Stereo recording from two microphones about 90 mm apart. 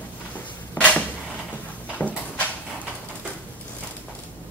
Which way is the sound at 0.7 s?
15° left (ahead or behind).